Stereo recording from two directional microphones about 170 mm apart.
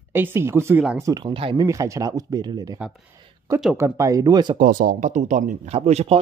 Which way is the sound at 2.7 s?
5° right (ahead or behind).